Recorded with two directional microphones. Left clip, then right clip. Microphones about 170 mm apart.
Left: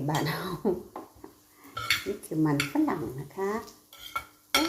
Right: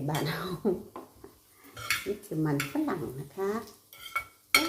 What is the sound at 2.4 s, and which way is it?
Speech, 5° left (ahead or behind).